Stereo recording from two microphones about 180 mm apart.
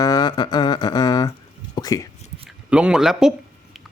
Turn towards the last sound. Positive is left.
turn(degrees=-5)  # may be behind; listen again after turning